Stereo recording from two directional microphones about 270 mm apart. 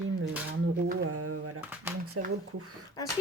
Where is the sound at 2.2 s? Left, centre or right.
Right.